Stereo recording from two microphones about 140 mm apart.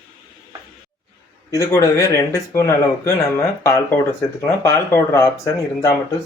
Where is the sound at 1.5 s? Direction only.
25° left (ahead or behind).